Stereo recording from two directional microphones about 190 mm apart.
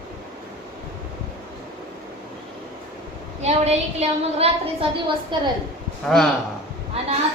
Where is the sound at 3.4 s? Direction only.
35° right (ahead or behind).